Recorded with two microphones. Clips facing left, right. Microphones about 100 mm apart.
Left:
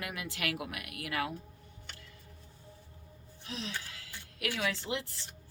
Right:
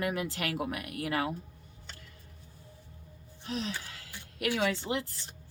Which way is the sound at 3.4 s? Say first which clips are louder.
Right 6 dB; 45° right (ahead or behind).